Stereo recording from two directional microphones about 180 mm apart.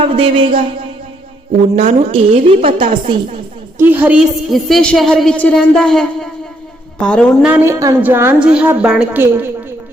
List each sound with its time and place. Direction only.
0.1 s a woman's voice: 30° right (ahead or behind)
1.7 s a woman's voice: 40° right (ahead or behind)
3.8 s a woman's voice: 10° right (ahead or behind)
7.4 s a woman's voice: 15° right (ahead or behind)